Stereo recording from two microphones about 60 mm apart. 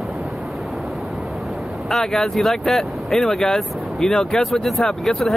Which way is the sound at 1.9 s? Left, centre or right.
Centre.